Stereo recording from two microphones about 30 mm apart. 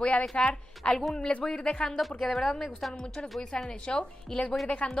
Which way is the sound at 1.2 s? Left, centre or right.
Left.